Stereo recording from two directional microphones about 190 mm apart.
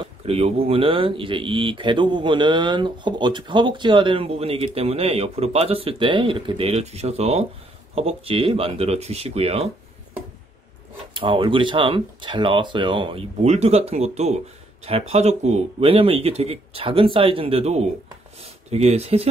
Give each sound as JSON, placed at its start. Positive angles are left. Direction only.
{"t": 0.0, "sound": "speech", "side_deg": -30}
{"t": 11.1, "sound": "speech", "side_deg": -25}